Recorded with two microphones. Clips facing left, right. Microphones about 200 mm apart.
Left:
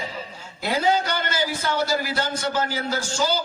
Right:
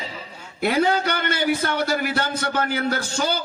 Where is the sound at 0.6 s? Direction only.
60° right (ahead or behind).